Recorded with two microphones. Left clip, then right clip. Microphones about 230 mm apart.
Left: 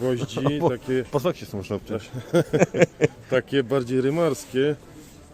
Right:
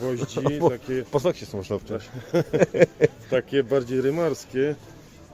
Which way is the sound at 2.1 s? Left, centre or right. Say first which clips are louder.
Left 2 dB; left.